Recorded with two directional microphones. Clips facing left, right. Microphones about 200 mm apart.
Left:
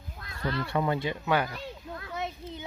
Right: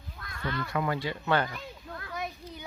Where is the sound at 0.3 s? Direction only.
30° left (ahead or behind).